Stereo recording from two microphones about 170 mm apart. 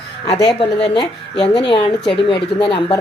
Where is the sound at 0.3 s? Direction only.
25° left (ahead or behind).